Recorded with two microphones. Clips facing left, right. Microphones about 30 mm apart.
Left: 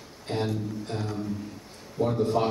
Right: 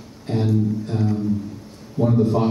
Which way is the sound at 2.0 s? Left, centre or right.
Centre.